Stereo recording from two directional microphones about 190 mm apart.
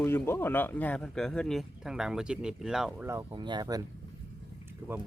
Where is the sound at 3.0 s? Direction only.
15° right (ahead or behind).